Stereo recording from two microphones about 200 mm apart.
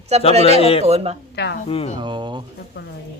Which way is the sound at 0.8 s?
30° right (ahead or behind).